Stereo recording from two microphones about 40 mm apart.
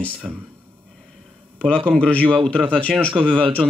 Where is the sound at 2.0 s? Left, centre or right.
Left.